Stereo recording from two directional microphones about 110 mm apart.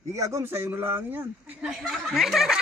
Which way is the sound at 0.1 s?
30° right (ahead or behind).